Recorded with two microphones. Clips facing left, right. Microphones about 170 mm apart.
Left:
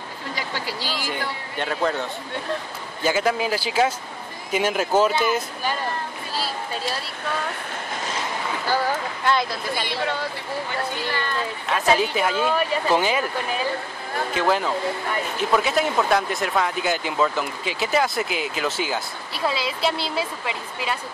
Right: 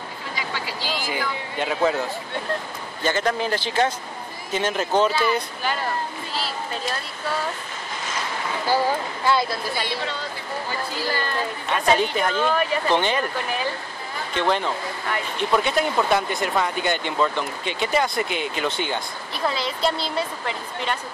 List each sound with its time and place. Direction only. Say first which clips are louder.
1.6 s speech: right 2 dB; 5° right (ahead or behind)
3.0 s speech: left 1 dB; 5° left (ahead or behind)
8.6 s speech: right 2 dB; 10° right (ahead or behind)
11.0 s speech: right 1 dB; 35° right (ahead or behind)
11.7 s speech: even; 5° left (ahead or behind)
14.3 s speech: even; 5° left (ahead or behind)